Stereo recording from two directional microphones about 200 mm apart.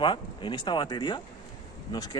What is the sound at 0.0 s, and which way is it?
Speech, 25° left (ahead or behind).